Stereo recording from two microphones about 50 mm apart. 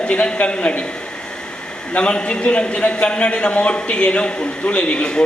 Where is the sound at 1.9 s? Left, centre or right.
Left.